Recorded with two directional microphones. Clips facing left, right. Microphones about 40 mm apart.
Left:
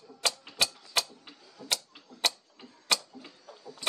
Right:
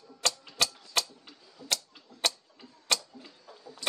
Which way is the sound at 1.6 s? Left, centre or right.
Centre.